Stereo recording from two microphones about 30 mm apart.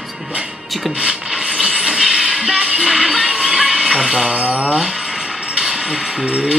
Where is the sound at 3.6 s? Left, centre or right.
Centre.